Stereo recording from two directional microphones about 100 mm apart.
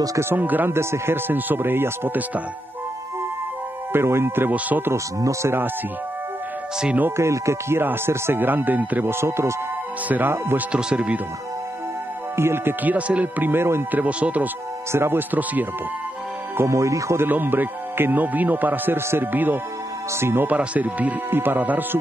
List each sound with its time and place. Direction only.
0.0 s music: 35° right (ahead or behind)
0.3 s speech: 20° right (ahead or behind)
3.9 s speech: 25° right (ahead or behind)
4.9 s speech: 30° right (ahead or behind)
6.8 s speech: 10° right (ahead or behind)
7.1 s speech: 30° right (ahead or behind)
10.8 s speech: 10° right (ahead or behind)
12.4 s speech: 25° right (ahead or behind)
16.5 s speech: 30° right (ahead or behind)